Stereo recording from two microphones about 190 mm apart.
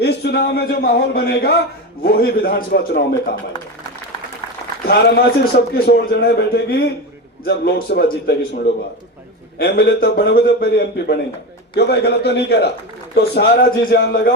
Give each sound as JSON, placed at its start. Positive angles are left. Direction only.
{"t": 0.0, "sound": "a man's voice", "side_deg": 60}
{"t": 4.9, "sound": "a man's voice", "side_deg": 60}